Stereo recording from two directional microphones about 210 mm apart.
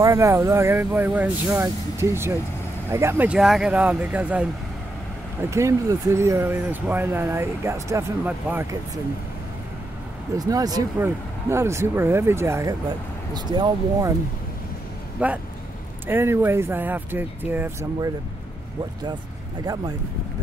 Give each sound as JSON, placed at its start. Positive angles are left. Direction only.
{"t": 0.0, "sound": "speech", "side_deg": -15}
{"t": 10.3, "sound": "speech", "side_deg": -15}
{"t": 15.1, "sound": "speech", "side_deg": -5}
{"t": 19.6, "sound": "speech", "side_deg": -15}